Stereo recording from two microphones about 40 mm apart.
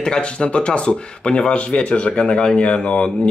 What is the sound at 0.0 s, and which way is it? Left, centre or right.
Speech, centre.